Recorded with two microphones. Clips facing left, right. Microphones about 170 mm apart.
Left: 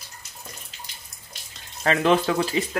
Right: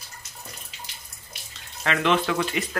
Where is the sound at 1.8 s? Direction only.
35° left (ahead or behind).